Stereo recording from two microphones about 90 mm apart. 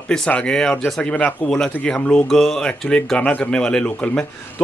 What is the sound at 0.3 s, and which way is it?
A man's voice, 10° left (ahead or behind).